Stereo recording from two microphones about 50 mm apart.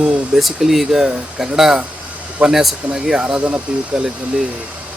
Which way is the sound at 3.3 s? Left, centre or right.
Right.